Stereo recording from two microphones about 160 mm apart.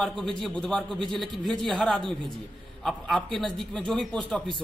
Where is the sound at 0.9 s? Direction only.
30° right (ahead or behind).